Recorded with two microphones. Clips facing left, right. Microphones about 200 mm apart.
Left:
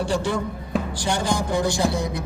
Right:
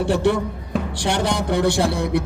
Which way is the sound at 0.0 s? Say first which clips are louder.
Right 5 dB; 60° right (ahead or behind).